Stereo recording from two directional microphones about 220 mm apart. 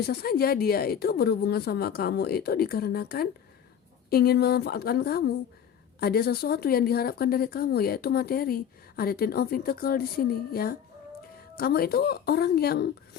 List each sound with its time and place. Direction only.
0.0 s speech: 45° left (ahead or behind)